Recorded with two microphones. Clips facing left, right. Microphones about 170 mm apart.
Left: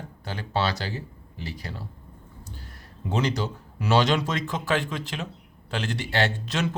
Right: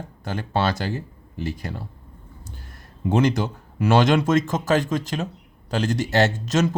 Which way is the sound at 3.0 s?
50° right (ahead or behind).